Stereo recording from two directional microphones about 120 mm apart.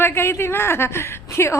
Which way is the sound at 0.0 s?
20° left (ahead or behind).